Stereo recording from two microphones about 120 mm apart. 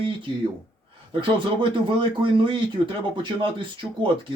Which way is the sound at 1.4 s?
45° right (ahead or behind).